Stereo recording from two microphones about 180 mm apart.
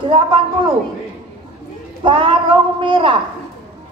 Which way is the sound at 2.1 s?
30° right (ahead or behind).